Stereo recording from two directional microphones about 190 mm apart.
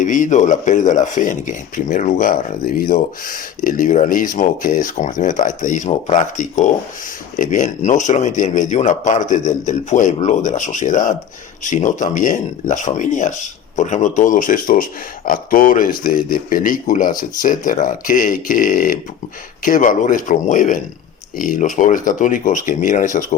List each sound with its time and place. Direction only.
0.0 s speech: 40° left (ahead or behind)